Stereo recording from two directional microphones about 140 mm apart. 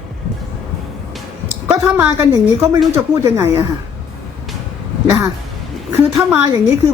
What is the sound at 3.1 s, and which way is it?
Speech, 20° right (ahead or behind).